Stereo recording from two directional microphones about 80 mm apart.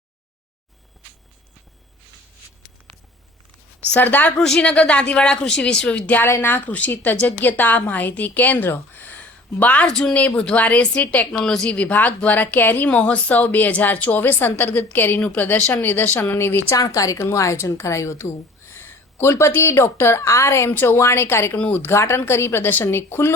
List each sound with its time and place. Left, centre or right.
3.9 s a woman's voice: left
4.4 s a woman's voice: centre
6.2 s a woman's voice: left
16.6 s a woman's voice: left